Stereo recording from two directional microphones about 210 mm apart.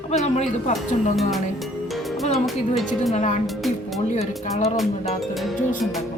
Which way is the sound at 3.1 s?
35° left (ahead or behind).